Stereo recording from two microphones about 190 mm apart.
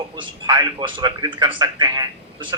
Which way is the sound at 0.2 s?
20° right (ahead or behind).